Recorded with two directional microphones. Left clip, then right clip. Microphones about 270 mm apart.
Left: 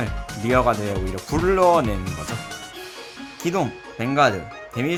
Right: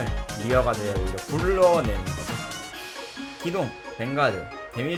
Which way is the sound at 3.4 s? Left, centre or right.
Left.